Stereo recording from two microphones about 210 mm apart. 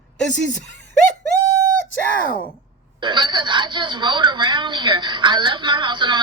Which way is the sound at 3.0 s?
20° right (ahead or behind).